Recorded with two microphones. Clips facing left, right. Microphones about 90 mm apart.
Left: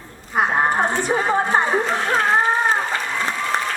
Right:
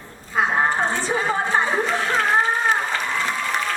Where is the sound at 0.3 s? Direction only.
15° left (ahead or behind).